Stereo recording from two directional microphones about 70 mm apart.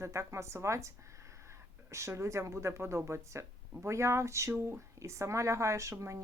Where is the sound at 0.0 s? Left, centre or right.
Right.